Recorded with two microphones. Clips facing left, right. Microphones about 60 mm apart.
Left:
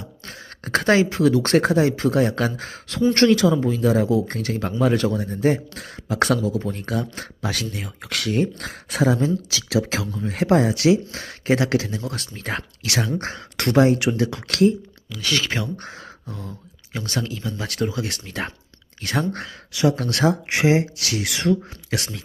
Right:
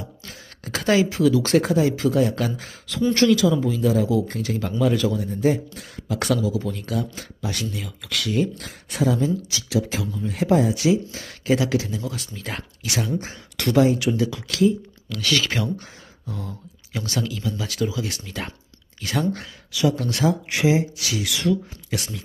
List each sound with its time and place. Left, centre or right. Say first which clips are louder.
0.3 s speech: left 9 dB; left
6.2 s speech: left 1 dB; left
9.6 s speech: left 2 dB; left
10.1 s speech: left 1 dB; left
10.3 s speech: left 1 dB; left
11.1 s speech: left 1 dB; left
12.3 s speech: left 4 dB; left
12.8 s speech: even; left
15.2 s speech: right 1 dB; left
19.8 s speech: left 2 dB; left